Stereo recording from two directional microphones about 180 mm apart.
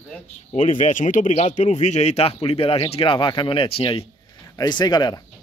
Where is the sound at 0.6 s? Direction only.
40° left (ahead or behind).